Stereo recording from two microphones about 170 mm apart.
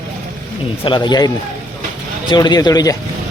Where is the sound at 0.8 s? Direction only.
25° left (ahead or behind).